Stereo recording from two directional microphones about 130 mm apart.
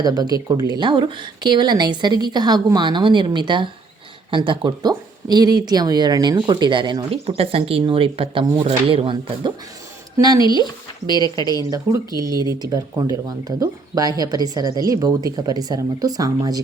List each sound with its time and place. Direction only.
0.0 s speech: 30° right (ahead or behind)
7.3 s speech: 50° right (ahead or behind); by 10.4 s 30° right (ahead or behind)
10.4 s speech: 35° left (ahead or behind)
11.7 s speech: 25° right (ahead or behind)